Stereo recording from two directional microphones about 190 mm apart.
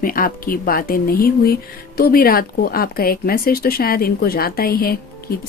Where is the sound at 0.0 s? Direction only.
50° left (ahead or behind).